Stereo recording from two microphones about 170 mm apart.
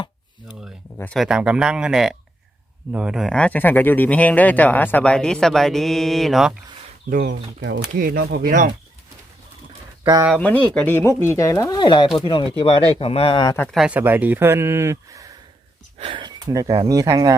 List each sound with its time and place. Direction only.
0.9 s speech: 5° left (ahead or behind)
7.1 s speech: 75° right (ahead or behind)
7.9 s speech: 60° right (ahead or behind)
10.0 s speech: 25° right (ahead or behind)
10.3 s speech: 5° left (ahead or behind); by 13.5 s 30° left (ahead or behind)
13.7 s speech: 5° right (ahead or behind)
16.0 s speech: 30° right (ahead or behind)